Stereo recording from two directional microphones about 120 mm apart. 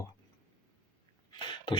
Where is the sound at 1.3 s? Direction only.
40° left (ahead or behind).